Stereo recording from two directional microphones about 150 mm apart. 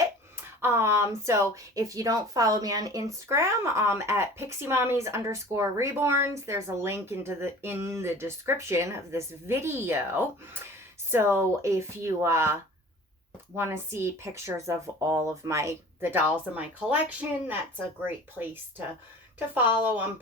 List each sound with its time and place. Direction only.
0.0 s speech: 15° right (ahead or behind)
13.6 s speech: 15° right (ahead or behind)